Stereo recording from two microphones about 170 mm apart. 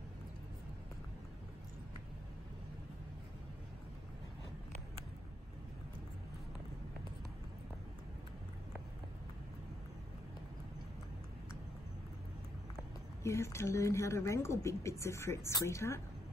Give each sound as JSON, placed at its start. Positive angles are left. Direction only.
{"t": 13.2, "sound": "speech", "side_deg": 15}